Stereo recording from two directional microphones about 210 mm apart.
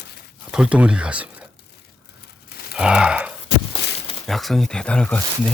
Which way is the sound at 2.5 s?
45° left (ahead or behind).